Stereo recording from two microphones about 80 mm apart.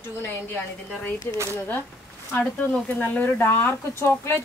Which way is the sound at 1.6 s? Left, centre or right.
Left.